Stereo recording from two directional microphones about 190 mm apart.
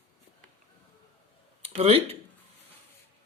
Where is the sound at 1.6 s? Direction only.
30° right (ahead or behind).